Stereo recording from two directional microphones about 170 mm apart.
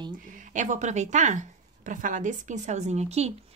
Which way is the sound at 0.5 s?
45° right (ahead or behind).